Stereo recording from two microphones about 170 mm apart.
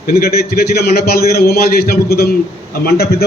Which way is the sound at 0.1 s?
65° left (ahead or behind).